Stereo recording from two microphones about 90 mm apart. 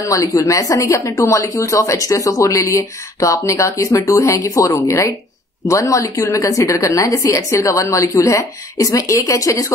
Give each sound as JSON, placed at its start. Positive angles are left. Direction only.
{"t": 0.1, "sound": "speech", "side_deg": 35}